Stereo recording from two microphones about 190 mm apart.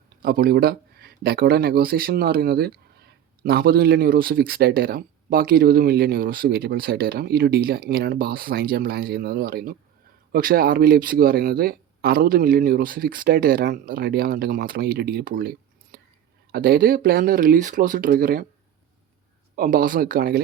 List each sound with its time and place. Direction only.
0.2 s speech: 50° right (ahead or behind)
19.5 s speech: 50° right (ahead or behind)